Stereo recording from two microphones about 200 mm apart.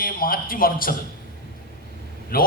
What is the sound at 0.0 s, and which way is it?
Speech, 45° left (ahead or behind).